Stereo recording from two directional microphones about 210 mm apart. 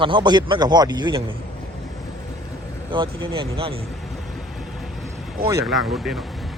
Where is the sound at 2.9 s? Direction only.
25° right (ahead or behind).